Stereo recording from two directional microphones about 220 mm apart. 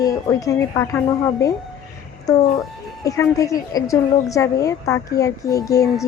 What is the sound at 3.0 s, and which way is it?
A woman's voice, 15° left (ahead or behind).